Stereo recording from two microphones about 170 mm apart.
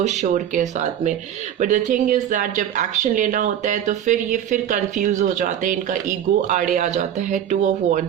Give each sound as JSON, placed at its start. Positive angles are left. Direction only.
{"t": 0.0, "sound": "speech", "side_deg": -45}